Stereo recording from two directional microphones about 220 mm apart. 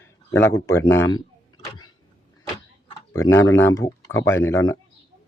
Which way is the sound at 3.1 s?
15° left (ahead or behind).